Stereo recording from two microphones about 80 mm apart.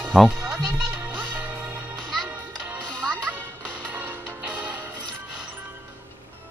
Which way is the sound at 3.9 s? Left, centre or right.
Right.